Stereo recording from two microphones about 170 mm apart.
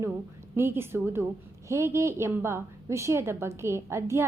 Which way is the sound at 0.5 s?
15° right (ahead or behind).